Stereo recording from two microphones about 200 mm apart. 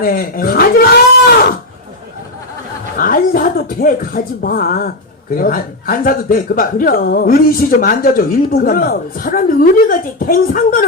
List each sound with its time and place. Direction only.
0.0 s speech: 45° left (ahead or behind)
3.0 s speech: 45° left (ahead or behind)